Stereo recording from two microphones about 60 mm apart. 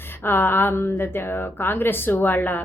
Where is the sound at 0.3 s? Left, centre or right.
Left.